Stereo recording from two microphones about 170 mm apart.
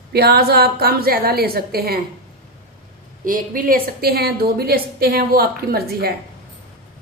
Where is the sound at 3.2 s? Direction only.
55° right (ahead or behind).